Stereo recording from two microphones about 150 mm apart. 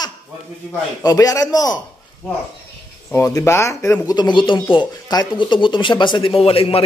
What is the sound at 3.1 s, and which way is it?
Speech, 15° left (ahead or behind).